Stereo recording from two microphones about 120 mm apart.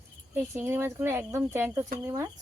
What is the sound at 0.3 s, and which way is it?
Speech, 20° right (ahead or behind).